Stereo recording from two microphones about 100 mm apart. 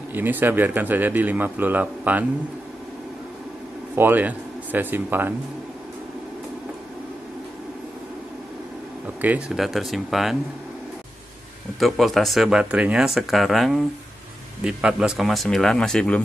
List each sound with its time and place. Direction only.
0.1 s a man's voice: 20° right (ahead or behind)
3.9 s speech: 20° right (ahead or behind)
9.2 s speech: 20° right (ahead or behind)
9.6 s speech: centre (ahead or behind)
11.8 s speech: centre (ahead or behind)